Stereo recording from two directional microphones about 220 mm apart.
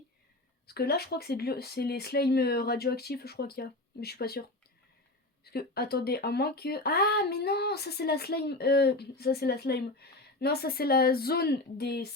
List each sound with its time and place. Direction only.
0.7 s speech: 45° left (ahead or behind)
5.5 s speech: 45° left (ahead or behind)